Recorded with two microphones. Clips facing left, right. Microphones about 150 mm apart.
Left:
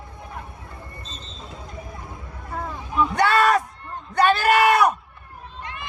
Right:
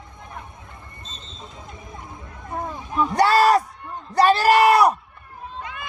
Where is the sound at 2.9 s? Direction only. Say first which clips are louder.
Right 2 dB; 35° right (ahead or behind).